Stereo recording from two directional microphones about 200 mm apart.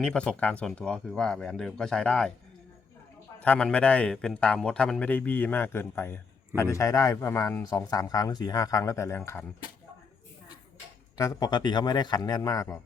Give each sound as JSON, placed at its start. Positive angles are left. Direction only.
{"t": 0.0, "sound": "a man's voice", "side_deg": 5}
{"t": 3.4, "sound": "a man's voice", "side_deg": 5}
{"t": 11.2, "sound": "a man's voice", "side_deg": 15}